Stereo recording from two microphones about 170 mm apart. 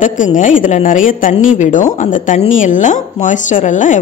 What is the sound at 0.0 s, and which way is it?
Speech, 50° left (ahead or behind).